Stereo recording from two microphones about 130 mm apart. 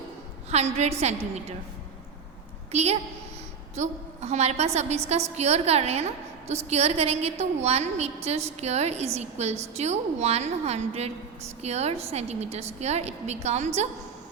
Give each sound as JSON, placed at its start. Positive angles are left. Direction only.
{"t": 0.5, "sound": "a woman's voice", "side_deg": -55}
{"t": 2.7, "sound": "a woman's voice", "side_deg": -55}